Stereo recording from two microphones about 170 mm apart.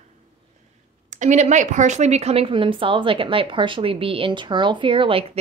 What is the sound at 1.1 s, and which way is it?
A woman's voice, 45° right (ahead or behind).